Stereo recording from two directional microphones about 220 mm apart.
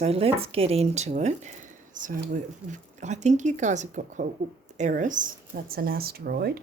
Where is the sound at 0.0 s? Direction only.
25° right (ahead or behind); by 6.6 s 45° right (ahead or behind).